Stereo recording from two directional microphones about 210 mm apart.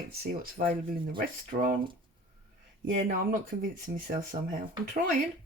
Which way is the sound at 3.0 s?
40° right (ahead or behind).